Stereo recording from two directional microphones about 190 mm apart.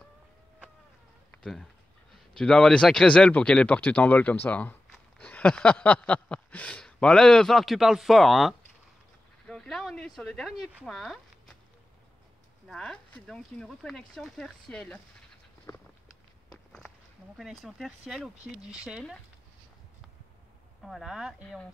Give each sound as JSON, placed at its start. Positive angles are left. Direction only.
{"t": 1.4, "sound": "speech", "side_deg": 0}
{"t": 12.6, "sound": "speech", "side_deg": 5}
{"t": 15.7, "sound": "a sound", "side_deg": 15}
{"t": 17.4, "sound": "speech", "side_deg": 0}
{"t": 20.8, "sound": "speech", "side_deg": 0}